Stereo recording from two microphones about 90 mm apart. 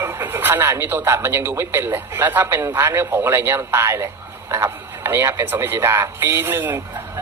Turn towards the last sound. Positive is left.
turn(degrees=-25)  # may be behind; listen again after turning